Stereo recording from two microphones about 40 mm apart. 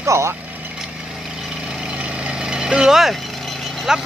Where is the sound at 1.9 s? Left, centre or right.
Right; by 3.2 s centre.